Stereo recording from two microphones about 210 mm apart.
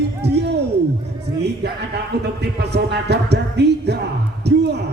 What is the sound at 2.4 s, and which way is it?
Speech, 55° right (ahead or behind).